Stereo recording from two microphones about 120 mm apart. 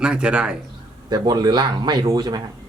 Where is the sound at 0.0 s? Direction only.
10° right (ahead or behind).